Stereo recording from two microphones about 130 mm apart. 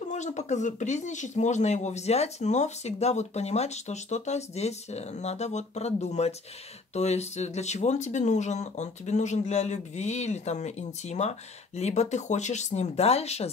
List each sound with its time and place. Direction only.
0.1 s speech: 65° left (ahead or behind)